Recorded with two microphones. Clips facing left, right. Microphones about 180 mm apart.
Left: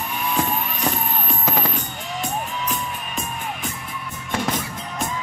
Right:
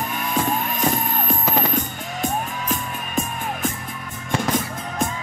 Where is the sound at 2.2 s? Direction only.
45° right (ahead or behind).